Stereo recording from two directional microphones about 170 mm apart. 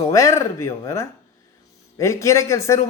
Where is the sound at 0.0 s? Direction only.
20° left (ahead or behind).